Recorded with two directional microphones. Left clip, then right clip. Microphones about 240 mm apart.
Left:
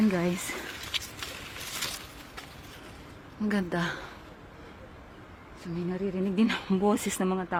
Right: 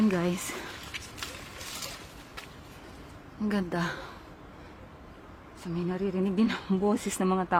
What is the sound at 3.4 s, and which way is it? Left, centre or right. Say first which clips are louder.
Speech: left 1 dB; centre.